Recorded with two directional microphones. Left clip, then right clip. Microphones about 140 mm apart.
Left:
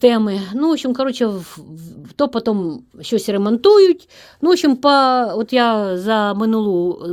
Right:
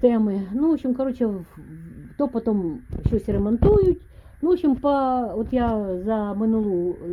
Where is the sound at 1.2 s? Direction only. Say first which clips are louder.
Left 6 dB; 10° left (ahead or behind).